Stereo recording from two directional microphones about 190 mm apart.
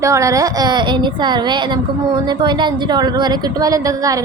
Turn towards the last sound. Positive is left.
turn(degrees=-20)  # may be behind; listen again after turning